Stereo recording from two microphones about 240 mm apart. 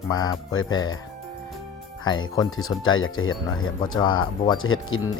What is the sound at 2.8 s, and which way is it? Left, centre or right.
Speech, left.